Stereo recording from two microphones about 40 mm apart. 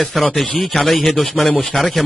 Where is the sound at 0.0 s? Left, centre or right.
Centre.